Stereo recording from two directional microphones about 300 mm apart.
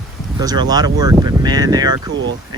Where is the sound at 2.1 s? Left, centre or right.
Right.